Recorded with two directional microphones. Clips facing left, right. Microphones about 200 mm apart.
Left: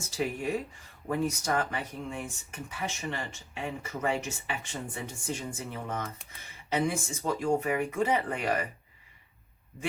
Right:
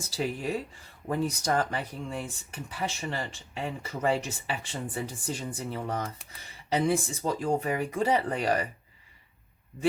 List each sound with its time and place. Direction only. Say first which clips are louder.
0.1 s speech: even; 35° right (ahead or behind)